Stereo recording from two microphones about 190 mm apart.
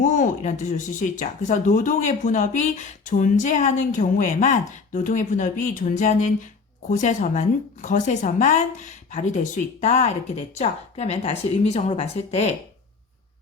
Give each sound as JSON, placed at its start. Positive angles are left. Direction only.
{"t": 0.0, "sound": "a woman's voice", "side_deg": 40}